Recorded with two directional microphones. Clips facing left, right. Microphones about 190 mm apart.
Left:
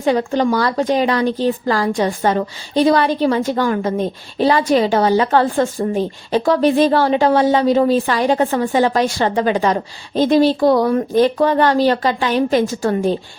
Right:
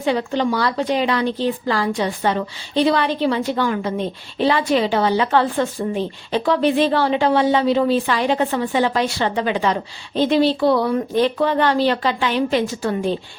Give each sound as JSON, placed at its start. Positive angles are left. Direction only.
{"t": 0.0, "sound": "a woman's voice", "side_deg": 45}